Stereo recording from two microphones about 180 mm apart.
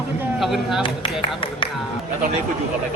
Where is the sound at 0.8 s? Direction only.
30° left (ahead or behind).